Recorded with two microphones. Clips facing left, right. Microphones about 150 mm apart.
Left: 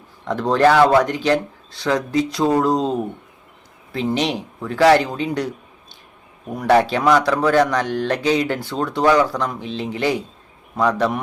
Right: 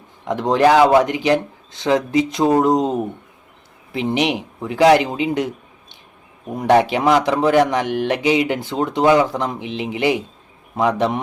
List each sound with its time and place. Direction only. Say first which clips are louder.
0.3 s a man's voice: right 1 dB; 20° right (ahead or behind)